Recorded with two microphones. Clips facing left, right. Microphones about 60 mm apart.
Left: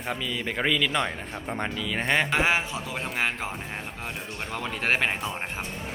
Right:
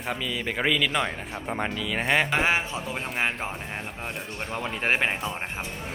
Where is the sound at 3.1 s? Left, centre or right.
Centre.